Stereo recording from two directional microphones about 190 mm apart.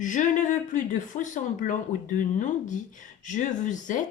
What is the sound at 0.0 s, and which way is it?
Speech, 40° left (ahead or behind).